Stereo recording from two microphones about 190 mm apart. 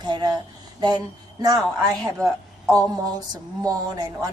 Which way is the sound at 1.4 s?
20° right (ahead or behind).